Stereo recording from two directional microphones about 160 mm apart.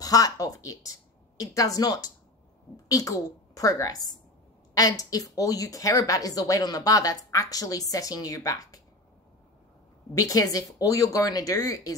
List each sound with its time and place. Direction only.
0.0 s a woman's voice: 20° left (ahead or behind)
10.1 s speech: 20° left (ahead or behind)